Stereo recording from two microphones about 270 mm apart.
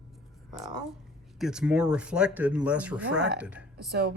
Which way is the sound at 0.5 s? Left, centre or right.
Centre.